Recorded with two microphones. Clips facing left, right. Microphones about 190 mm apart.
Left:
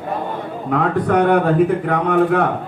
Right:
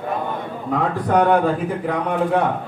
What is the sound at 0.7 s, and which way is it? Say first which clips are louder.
Speech: left 3 dB; 70° left (ahead or behind).